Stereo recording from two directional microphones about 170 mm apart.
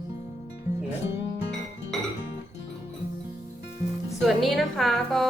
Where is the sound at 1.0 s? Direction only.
90° left.